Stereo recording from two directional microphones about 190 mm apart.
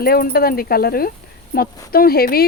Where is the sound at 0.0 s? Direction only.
55° left (ahead or behind).